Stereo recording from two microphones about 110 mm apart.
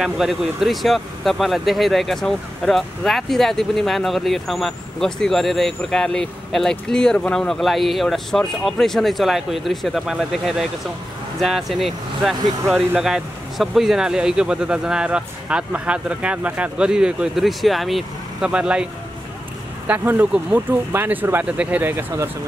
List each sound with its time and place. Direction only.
0.0 s speech: 5° right (ahead or behind)
19.9 s speech: 15° right (ahead or behind)